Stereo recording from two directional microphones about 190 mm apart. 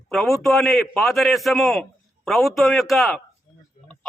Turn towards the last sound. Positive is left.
turn(degrees=0)  # may be behind; listen again after turning